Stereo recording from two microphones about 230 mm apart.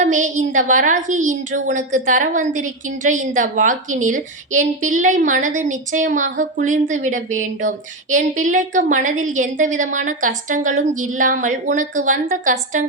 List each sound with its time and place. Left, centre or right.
0.0 s a woman's voice: right